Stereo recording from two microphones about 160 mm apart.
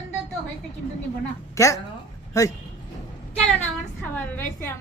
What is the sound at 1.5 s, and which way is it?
Speech, 20° left (ahead or behind).